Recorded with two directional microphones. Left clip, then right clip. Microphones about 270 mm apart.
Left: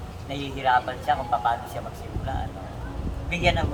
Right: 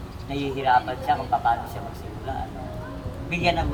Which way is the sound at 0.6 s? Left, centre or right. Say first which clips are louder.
Right 1 dB; centre.